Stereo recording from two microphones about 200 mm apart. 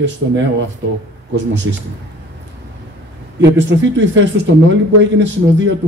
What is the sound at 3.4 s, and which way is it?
Speech, 65° right (ahead or behind).